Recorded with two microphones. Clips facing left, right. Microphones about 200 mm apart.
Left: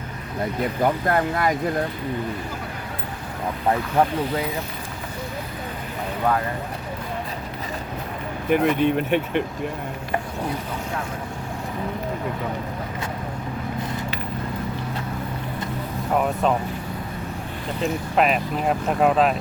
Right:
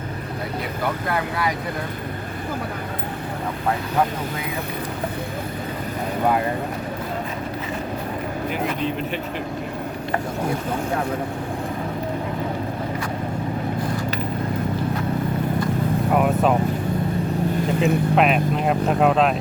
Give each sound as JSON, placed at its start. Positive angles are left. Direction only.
{"t": 1.0, "sound": "speech", "side_deg": 50}
{"t": 8.4, "sound": "speech", "side_deg": 60}
{"t": 16.1, "sound": "vehicle", "side_deg": -5}
{"t": 18.2, "sound": "speech", "side_deg": 0}